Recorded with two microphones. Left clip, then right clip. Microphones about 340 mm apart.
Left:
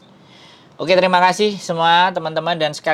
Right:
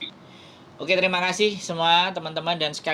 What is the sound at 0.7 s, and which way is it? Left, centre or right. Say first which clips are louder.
Speech: left 8 dB; left.